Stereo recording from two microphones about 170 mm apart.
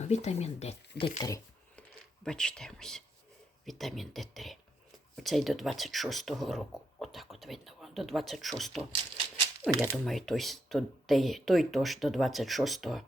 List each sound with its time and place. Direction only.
0.0 s speech: 40° left (ahead or behind)
2.2 s speech: 5° left (ahead or behind)
9.9 s speech: centre (ahead or behind)